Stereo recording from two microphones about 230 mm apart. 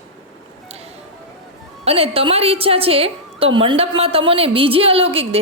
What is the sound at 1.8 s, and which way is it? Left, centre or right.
A woman's voice, right.